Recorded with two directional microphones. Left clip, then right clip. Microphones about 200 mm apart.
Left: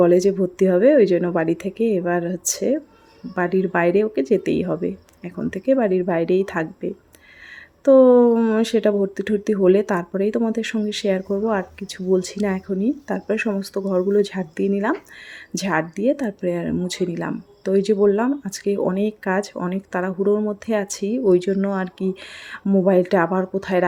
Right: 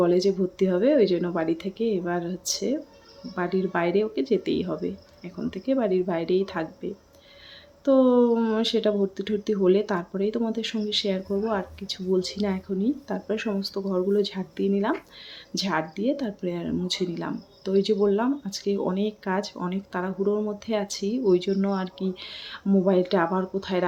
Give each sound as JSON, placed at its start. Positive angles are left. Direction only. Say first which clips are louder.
{"t": 0.0, "sound": "speech", "louder": "left 6 dB", "side_deg": 35}